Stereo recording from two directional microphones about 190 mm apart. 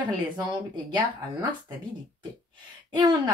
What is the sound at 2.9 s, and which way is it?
Speech, 20° right (ahead or behind).